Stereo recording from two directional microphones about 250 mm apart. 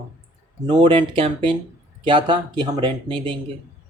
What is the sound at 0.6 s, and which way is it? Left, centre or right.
Speech, centre.